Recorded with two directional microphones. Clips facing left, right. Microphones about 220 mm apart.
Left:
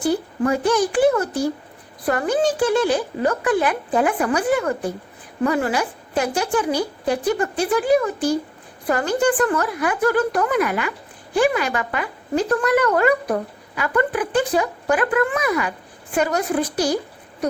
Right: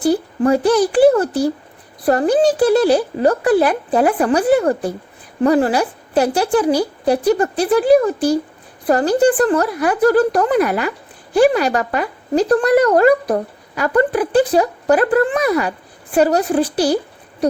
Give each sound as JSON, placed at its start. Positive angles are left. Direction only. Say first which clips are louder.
{"t": 0.0, "sound": "speech", "louder": "right 5 dB", "side_deg": -35}